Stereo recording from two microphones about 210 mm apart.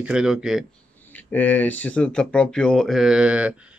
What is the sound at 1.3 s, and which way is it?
Speech, 10° left (ahead or behind).